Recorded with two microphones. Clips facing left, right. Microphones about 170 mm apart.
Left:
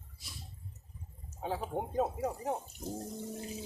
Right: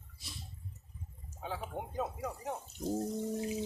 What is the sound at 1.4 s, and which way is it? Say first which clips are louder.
Speech: left 4 dB; 35° left (ahead or behind).